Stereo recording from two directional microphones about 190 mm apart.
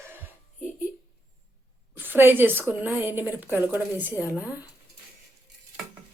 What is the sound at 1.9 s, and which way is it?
A woman's voice, 10° right (ahead or behind).